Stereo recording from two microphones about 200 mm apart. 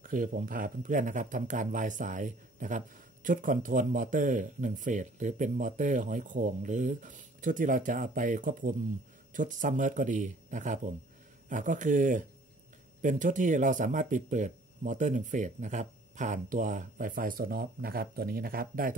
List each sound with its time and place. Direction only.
0.0 s speech: 45° right (ahead or behind)